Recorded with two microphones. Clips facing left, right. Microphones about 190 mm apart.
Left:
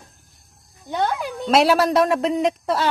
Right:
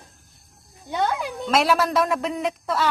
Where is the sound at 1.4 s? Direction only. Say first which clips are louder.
Left 4 dB; 30° left (ahead or behind).